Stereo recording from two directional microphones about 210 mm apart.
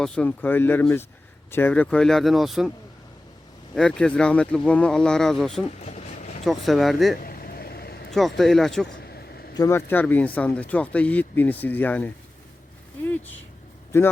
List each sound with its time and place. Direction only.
0.0 s speech: 5° left (ahead or behind)
3.8 s speech: 5° left (ahead or behind)
5.8 s a sound: 35° left (ahead or behind)
6.4 s speech: centre (ahead or behind)
7.2 s vehicle: 45° left (ahead or behind)
8.1 s speech: centre (ahead or behind)
9.0 s a sound: 50° left (ahead or behind)
9.6 s speech: 15° left (ahead or behind)
13.9 s speech: 10° left (ahead or behind)